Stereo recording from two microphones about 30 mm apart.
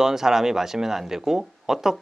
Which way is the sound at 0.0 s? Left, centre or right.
Centre.